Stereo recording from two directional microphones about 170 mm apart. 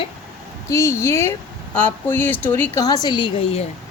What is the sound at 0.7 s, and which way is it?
A woman's voice, 15° left (ahead or behind).